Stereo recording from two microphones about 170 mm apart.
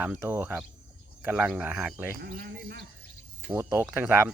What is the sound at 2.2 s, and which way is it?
Speech, 60° right (ahead or behind).